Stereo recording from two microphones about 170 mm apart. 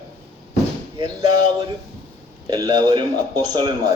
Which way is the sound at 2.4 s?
25° right (ahead or behind).